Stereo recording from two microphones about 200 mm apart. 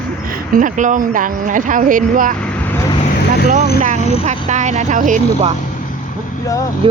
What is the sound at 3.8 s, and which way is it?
Speech, 35° right (ahead or behind).